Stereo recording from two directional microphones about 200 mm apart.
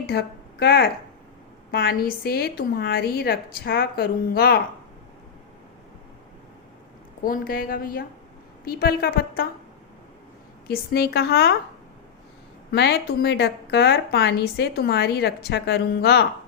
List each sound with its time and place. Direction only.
0.1 s a woman's voice: 50° left (ahead or behind)
7.3 s a woman's voice: 45° left (ahead or behind)
10.7 s a woman's voice: 50° left (ahead or behind)
12.7 s a woman's voice: 55° left (ahead or behind)